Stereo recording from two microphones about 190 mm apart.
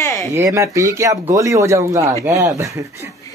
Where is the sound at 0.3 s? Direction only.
15° right (ahead or behind).